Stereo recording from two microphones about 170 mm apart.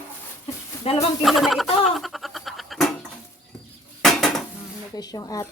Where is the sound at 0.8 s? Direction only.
35° left (ahead or behind).